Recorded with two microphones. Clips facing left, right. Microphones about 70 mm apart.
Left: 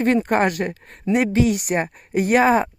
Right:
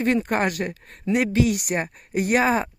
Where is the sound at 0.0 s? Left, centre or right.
Left.